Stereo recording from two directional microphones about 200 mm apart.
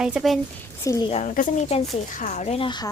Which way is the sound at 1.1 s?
35° left (ahead or behind).